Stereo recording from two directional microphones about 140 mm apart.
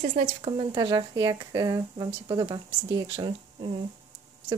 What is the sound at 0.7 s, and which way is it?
Speech, 30° right (ahead or behind).